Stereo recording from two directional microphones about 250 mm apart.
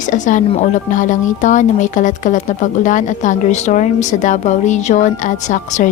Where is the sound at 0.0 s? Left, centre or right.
Left.